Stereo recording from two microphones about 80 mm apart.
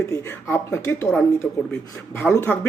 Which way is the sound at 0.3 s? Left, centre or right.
Left.